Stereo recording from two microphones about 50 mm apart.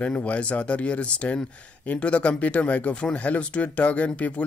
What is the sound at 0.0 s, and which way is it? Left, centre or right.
Speech, left.